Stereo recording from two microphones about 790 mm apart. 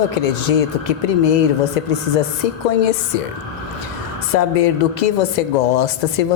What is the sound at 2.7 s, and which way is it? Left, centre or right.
Speech, left.